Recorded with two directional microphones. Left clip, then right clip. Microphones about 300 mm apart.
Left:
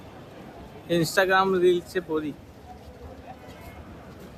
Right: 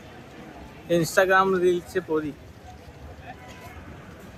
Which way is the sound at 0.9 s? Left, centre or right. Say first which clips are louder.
Right 2 dB; centre.